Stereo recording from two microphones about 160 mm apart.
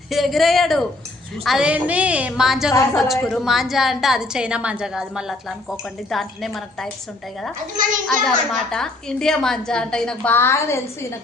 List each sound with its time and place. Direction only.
0.1 s a woman's voice: centre (ahead or behind)
7.8 s a child's voice: 55° right (ahead or behind)
8.2 s a woman's voice: 5° left (ahead or behind)